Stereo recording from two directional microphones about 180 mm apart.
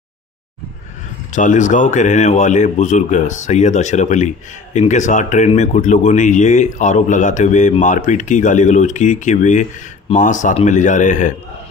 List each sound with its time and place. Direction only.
1.3 s speech: 45° left (ahead or behind)